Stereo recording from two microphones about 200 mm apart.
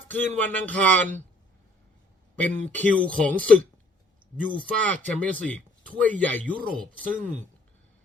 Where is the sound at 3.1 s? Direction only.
5° left (ahead or behind).